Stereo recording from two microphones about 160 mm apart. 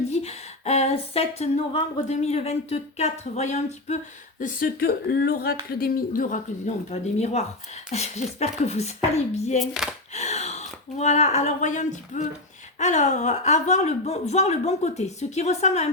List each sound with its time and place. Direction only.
0.1 s speech: 40° left (ahead or behind); by 6.4 s 65° left (ahead or behind)
6.9 s speech: 45° left (ahead or behind)